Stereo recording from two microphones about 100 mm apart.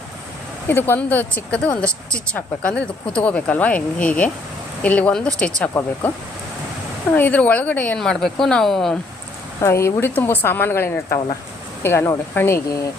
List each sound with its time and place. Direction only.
0.7 s speech: 20° left (ahead or behind)
7.9 s speech: 5° left (ahead or behind)
9.6 s a woman's voice: 25° left (ahead or behind)